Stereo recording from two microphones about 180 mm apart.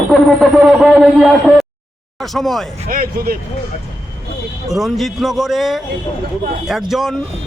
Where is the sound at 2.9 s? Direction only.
55° right (ahead or behind).